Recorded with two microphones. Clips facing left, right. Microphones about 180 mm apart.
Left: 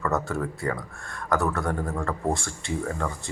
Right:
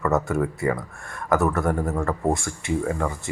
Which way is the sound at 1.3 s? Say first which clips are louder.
Right 4 dB; 20° right (ahead or behind).